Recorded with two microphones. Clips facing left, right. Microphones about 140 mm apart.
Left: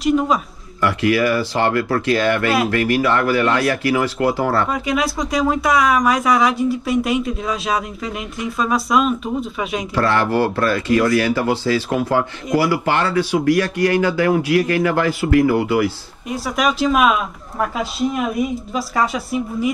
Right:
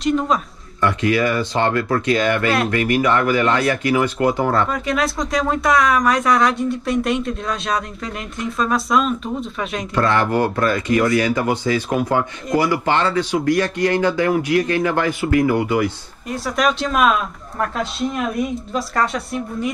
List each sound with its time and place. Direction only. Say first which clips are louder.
0.0 s speech: left 2 dB; centre (ahead or behind)
0.7 s speech: left 1 dB; 25° right (ahead or behind)
4.6 s speech: left 1 dB; 5° left (ahead or behind)
9.9 s speech: even; 20° right (ahead or behind)
12.8 s speech: even; 20° right (ahead or behind)
16.3 s speech: even; centre (ahead or behind)